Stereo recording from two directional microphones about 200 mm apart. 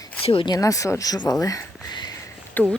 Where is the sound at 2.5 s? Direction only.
5° left (ahead or behind).